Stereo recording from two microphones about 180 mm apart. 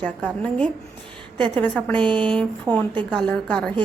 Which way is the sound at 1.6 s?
10° left (ahead or behind).